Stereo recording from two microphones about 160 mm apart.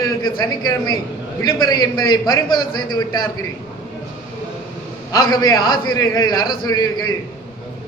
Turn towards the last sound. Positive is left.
turn(degrees=25)  # may be behind; listen again after turning